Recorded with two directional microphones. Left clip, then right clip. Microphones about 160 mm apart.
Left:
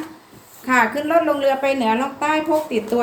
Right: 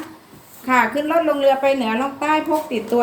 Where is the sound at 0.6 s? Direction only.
20° left (ahead or behind).